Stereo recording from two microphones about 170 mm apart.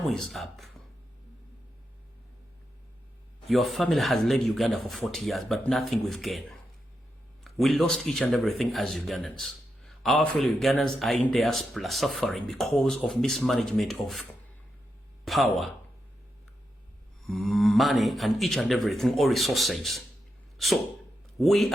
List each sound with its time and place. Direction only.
0.1 s speech: centre (ahead or behind)
3.4 s speech: centre (ahead or behind)
17.2 s speech: centre (ahead or behind)
20.6 s a sound: centre (ahead or behind)
21.3 s speech: centre (ahead or behind)